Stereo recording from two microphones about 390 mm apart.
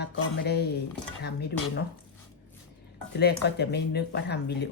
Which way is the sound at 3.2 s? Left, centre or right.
Left.